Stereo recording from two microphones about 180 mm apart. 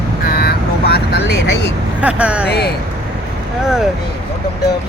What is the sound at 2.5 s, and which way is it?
Speech, 65° left (ahead or behind).